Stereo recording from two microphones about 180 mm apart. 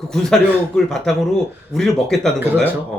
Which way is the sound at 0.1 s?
5° left (ahead or behind).